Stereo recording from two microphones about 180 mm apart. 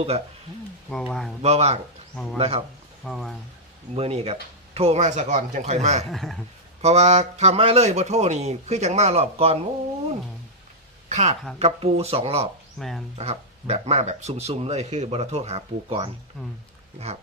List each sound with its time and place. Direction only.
0.9 s speech: 5° left (ahead or behind)
1.4 s speech: 35° right (ahead or behind)
2.1 s speech: 5° left (ahead or behind)
2.4 s speech: 35° right (ahead or behind)
3.0 s speech: centre (ahead or behind)
3.9 s speech: 35° right (ahead or behind)
6.1 s speech: centre (ahead or behind)
6.8 s speech: 35° right (ahead or behind)
11.1 s speech: 40° right (ahead or behind)
12.8 s speech: centre (ahead or behind)
13.1 s speech: 35° right (ahead or behind)
17.1 s a sound: 35° right (ahead or behind)